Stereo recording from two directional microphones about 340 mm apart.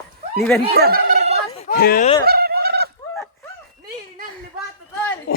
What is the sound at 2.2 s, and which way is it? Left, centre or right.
Fowl, right.